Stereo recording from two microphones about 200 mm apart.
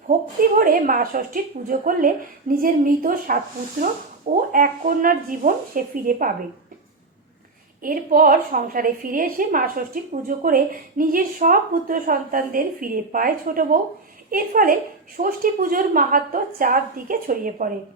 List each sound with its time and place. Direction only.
0.6 s a woman's voice: 45° right (ahead or behind)
7.8 s a woman's voice: 45° right (ahead or behind)